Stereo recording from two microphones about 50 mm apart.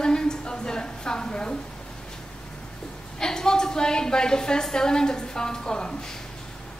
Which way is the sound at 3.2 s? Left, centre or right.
Centre.